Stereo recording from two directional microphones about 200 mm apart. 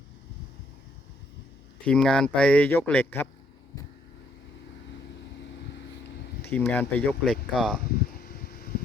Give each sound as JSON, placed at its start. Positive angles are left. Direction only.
{"t": 1.8, "sound": "a man's voice", "side_deg": 5}
{"t": 6.5, "sound": "speech", "side_deg": 10}
{"t": 7.9, "sound": "a sound", "side_deg": 45}